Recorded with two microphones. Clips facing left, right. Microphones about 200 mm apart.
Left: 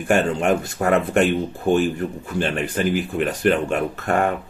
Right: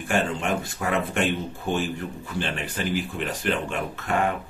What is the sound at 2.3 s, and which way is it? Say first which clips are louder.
Speech: left 7 dB; 45° left (ahead or behind).